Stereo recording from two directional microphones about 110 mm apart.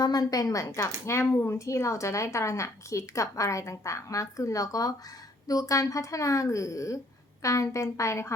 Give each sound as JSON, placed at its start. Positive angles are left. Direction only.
{"t": 0.0, "sound": "a woman's voice", "side_deg": 35}